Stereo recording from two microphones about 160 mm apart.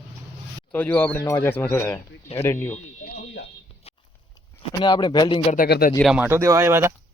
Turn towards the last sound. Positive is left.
turn(degrees=-15)  # may be behind; listen again after turning